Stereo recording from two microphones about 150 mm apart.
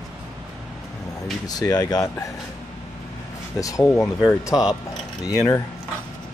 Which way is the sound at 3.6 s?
20° left (ahead or behind).